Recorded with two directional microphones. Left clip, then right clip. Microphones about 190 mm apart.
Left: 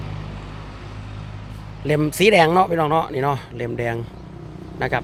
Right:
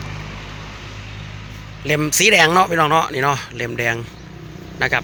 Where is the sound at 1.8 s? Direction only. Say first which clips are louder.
Right 2 dB; 20° left (ahead or behind).